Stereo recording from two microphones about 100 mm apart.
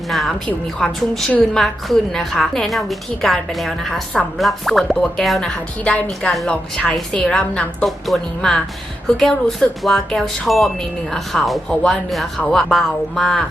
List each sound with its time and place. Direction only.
0.1 s a woman's voice: centre (ahead or behind)
7.9 s a woman's voice: centre (ahead or behind)